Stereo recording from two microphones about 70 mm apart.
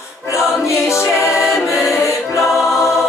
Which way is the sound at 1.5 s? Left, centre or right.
Left.